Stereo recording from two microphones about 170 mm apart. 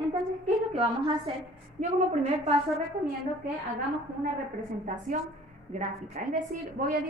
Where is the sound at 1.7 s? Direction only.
45° right (ahead or behind).